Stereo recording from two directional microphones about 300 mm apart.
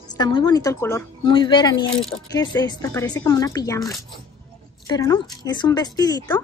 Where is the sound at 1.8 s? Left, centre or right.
Centre.